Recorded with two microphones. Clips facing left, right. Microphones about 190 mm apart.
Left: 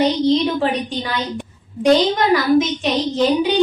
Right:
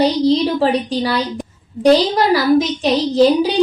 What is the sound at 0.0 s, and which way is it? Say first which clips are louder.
A woman's voice: right 2 dB; 35° right (ahead or behind).